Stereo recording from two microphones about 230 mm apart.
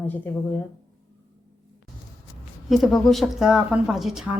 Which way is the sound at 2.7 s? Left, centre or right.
Centre.